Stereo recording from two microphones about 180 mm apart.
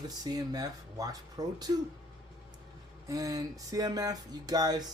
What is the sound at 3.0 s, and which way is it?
Speech, 20° right (ahead or behind).